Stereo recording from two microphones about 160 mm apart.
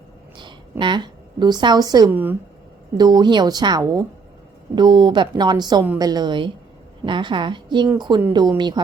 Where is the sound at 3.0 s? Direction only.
25° right (ahead or behind).